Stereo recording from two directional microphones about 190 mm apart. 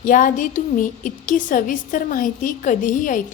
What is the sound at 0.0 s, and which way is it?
A woman's voice, 45° left (ahead or behind).